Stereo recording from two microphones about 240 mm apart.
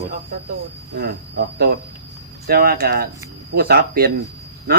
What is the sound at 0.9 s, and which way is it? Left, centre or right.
Speech, right.